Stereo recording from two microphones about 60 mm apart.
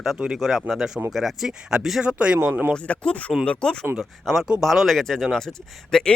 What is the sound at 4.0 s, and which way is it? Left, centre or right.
Speech, centre.